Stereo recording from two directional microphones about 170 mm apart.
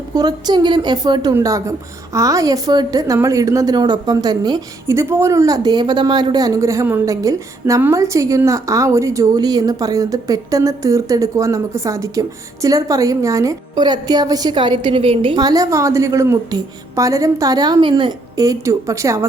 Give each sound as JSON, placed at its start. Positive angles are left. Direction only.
{"t": 0.1, "sound": "a woman's voice", "side_deg": -25}